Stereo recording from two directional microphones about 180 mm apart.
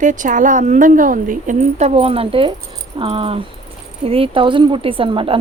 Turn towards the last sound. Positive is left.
turn(degrees=-30)  # may be behind; listen again after turning